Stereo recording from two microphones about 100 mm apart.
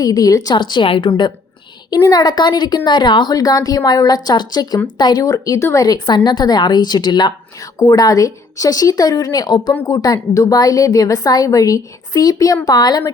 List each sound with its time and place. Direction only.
0.0 s speech: 40° left (ahead or behind)
5.2 s a woman's voice: 35° left (ahead or behind)